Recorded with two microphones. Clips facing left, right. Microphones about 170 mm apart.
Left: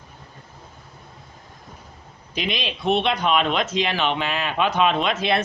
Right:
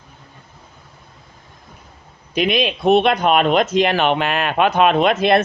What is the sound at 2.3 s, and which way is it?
Speech, 55° right (ahead or behind).